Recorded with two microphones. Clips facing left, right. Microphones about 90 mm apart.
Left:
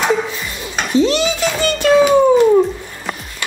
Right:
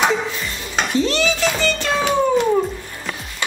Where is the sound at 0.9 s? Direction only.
15° left (ahead or behind).